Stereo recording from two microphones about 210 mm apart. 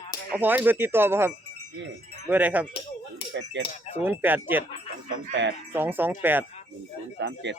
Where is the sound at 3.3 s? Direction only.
60° right (ahead or behind).